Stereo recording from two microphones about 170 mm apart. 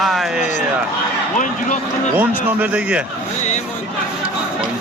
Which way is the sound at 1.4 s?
50° left (ahead or behind).